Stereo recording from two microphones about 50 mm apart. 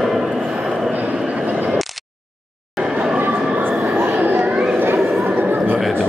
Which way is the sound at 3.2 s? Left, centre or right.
Right.